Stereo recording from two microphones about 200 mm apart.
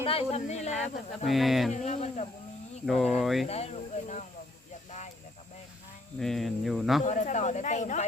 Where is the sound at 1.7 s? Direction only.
35° left (ahead or behind).